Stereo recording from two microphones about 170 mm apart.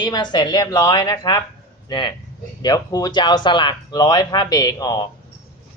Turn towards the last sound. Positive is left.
turn(degrees=25)  # may be behind; listen again after turning